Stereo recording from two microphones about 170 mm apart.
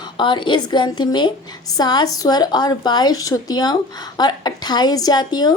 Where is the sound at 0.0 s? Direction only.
30° left (ahead or behind).